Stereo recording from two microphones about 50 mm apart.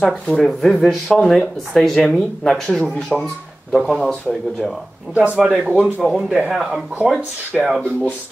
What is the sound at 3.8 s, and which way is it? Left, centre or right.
Speech, centre.